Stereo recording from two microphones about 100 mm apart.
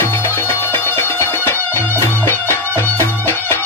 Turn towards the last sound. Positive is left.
turn(degrees=25)  # may be behind; listen again after turning